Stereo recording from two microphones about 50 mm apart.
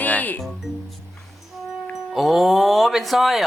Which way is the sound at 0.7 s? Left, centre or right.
Right.